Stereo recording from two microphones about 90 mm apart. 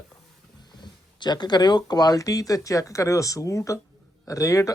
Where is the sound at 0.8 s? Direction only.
55° left (ahead or behind).